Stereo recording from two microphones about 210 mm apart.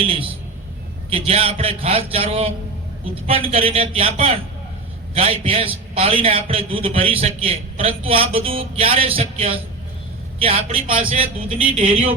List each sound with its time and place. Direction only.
0.0 s a man's voice: 25° right (ahead or behind)